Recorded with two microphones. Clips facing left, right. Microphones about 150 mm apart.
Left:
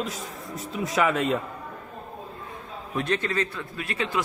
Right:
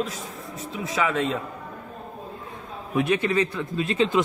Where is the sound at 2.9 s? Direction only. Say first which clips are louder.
Right 5 dB; 10° right (ahead or behind).